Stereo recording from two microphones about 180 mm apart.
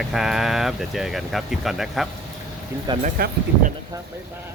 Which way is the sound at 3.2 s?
55° right (ahead or behind).